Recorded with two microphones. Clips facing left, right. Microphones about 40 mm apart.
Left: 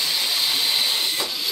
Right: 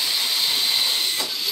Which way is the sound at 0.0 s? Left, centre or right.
Centre.